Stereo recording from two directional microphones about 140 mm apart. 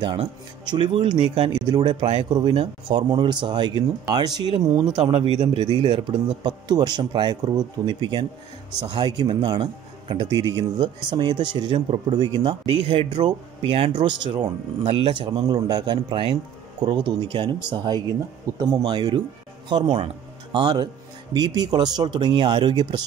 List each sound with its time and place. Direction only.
0.0 s speech: 35° right (ahead or behind)